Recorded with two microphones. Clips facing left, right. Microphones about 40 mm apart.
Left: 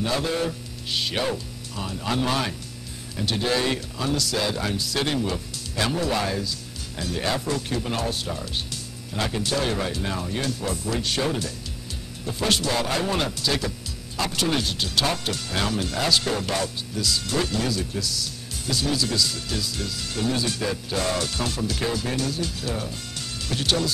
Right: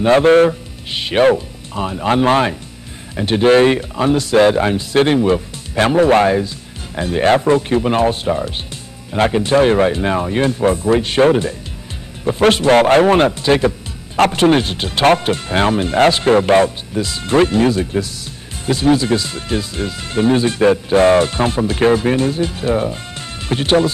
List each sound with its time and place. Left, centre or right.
0.0 s a man's voice: right
0.8 s speech: right
12.3 s speech: right
12.7 s a man's voice: right
13.3 s speech: right